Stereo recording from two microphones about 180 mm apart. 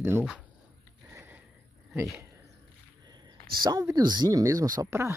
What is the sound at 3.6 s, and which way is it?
Speech, 20° right (ahead or behind).